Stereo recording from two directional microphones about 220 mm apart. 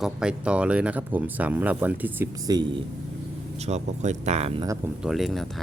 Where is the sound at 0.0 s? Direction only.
5° right (ahead or behind).